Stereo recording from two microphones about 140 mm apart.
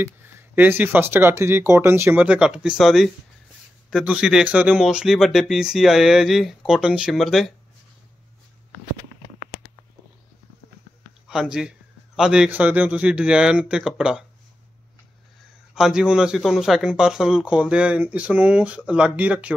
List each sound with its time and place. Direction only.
0.0 s speech: 15° right (ahead or behind); by 7.5 s centre (ahead or behind)
11.2 s speech: 5° right (ahead or behind)
15.7 s speech: 5° right (ahead or behind)